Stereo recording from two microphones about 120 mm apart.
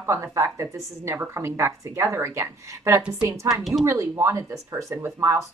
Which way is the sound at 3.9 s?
20° right (ahead or behind).